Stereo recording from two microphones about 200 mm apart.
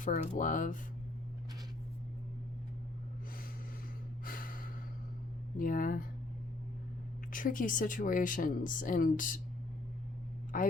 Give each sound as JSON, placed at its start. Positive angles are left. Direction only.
{"t": 0.0, "sound": "speech", "side_deg": 40}
{"t": 4.3, "sound": "gasp", "side_deg": 45}
{"t": 5.5, "sound": "speech", "side_deg": 45}
{"t": 7.3, "sound": "speech", "side_deg": 40}
{"t": 10.5, "sound": "speech", "side_deg": 45}